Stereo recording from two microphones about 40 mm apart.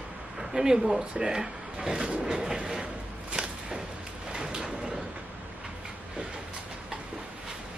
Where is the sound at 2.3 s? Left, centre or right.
Centre.